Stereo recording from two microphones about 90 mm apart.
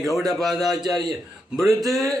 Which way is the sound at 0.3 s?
Centre (ahead or behind).